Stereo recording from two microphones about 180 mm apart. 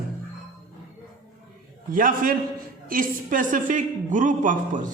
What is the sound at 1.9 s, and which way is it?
A woman's voice, 50° right (ahead or behind).